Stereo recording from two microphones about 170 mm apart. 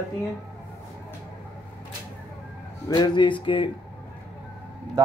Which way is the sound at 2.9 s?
25° left (ahead or behind).